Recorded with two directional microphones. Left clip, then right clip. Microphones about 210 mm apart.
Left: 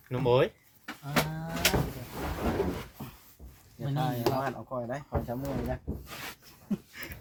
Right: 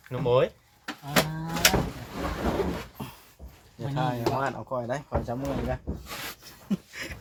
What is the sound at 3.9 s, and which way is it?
Speech, 30° right (ahead or behind).